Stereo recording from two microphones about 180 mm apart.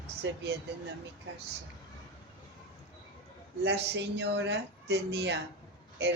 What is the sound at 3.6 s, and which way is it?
Speech, 70° right (ahead or behind).